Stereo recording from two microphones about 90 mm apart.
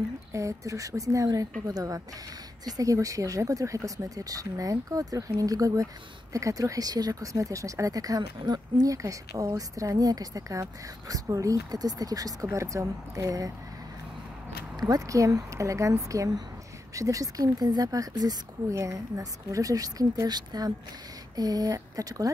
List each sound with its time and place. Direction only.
0.3 s speech: 35° right (ahead or behind)
14.8 s speech: 45° right (ahead or behind)